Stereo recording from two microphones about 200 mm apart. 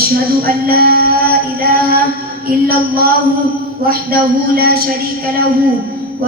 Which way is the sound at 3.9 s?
50° right (ahead or behind).